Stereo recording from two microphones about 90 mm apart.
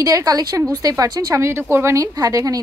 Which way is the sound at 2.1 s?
40° right (ahead or behind).